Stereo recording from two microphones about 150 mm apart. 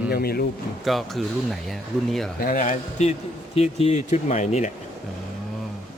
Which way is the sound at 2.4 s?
65° left (ahead or behind).